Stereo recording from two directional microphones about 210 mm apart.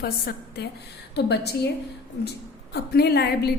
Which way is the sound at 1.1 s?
50° left (ahead or behind).